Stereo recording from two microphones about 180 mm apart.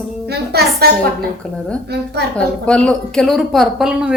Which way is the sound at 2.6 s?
5° left (ahead or behind).